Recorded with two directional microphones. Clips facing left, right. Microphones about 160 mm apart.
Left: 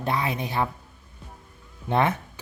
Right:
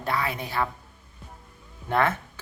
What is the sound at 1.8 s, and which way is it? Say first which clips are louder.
Speech: left 1 dB; 20° left (ahead or behind).